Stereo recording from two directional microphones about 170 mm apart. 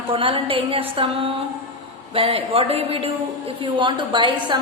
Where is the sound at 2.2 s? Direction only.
35° right (ahead or behind).